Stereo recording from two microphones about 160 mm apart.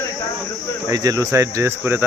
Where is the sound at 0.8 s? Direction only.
20° right (ahead or behind).